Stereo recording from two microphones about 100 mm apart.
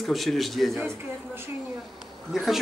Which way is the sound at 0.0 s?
Centre (ahead or behind).